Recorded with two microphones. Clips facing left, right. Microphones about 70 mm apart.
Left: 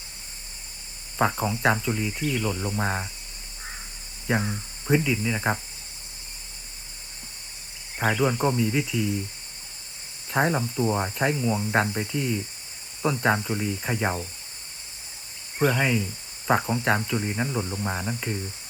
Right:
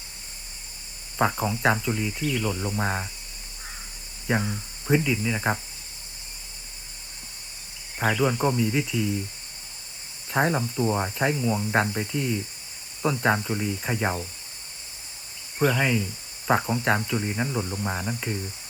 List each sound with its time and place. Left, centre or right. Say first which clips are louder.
1.2 s speech: even; centre
4.3 s speech: even; centre
8.2 s speech: even; centre
10.2 s speech: even; centre
15.5 s speech: even; left
15.8 s speech: even; centre